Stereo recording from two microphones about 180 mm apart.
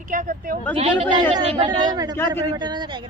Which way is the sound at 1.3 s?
30° right (ahead or behind).